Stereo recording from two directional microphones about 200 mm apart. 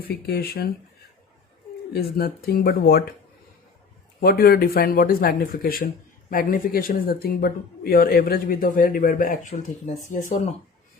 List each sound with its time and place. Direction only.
0.1 s speech: 50° left (ahead or behind)
1.9 s speech: 50° left (ahead or behind)
4.2 s speech: 50° left (ahead or behind)